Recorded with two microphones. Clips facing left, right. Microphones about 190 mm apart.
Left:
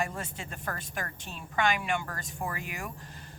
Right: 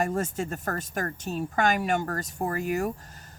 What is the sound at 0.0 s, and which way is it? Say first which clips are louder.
Speech: right 8 dB; 45° right (ahead or behind).